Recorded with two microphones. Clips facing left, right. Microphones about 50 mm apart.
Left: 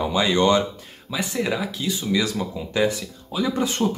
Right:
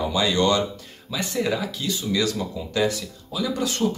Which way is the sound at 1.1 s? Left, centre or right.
Centre.